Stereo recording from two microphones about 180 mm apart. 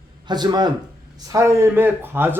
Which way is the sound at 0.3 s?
25° right (ahead or behind).